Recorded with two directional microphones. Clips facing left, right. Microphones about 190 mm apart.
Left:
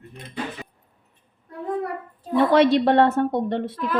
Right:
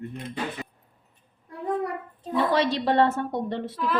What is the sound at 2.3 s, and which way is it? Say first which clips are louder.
A woman's voice: left 7 dB; 60° left (ahead or behind).